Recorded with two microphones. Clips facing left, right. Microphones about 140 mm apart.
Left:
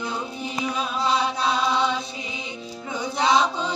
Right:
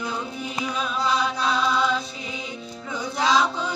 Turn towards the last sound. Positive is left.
turn(degrees=20)  # may be behind; listen again after turning